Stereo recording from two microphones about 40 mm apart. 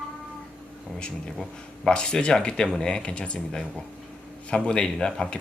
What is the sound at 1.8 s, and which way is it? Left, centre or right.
Speech, centre.